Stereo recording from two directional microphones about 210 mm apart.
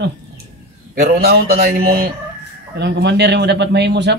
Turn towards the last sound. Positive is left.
turn(degrees=-55)  # may be behind; listen again after turning